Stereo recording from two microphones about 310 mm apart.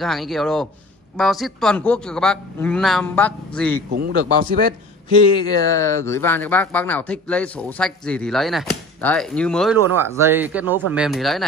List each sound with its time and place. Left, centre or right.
0.0 s speech: centre
3.9 s a man's voice: right
5.4 s speech: centre